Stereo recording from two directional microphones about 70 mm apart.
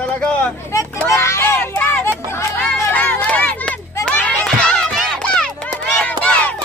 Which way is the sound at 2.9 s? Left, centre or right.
Left.